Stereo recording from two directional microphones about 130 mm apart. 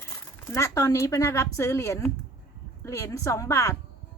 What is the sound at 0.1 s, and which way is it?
A woman's voice, 20° left (ahead or behind).